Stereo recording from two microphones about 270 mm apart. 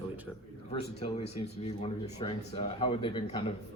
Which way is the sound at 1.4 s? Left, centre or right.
Left.